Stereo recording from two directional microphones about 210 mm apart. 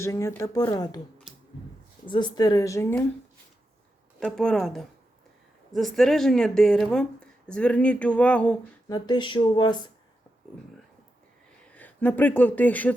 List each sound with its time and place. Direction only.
0.0 s speech: 15° left (ahead or behind)
2.0 s speech: 20° left (ahead or behind)
4.2 s speech: 5° left (ahead or behind)
8.9 s speech: 20° left (ahead or behind)
11.7 s speech: 10° left (ahead or behind)